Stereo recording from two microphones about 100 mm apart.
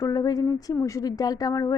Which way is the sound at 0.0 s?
40° left (ahead or behind).